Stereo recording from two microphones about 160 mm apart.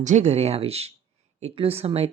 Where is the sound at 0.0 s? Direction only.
45° right (ahead or behind).